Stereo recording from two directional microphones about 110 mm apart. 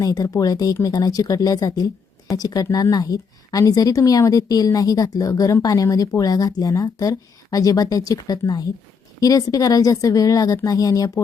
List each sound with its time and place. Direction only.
0.0 s a woman's voice: 30° left (ahead or behind)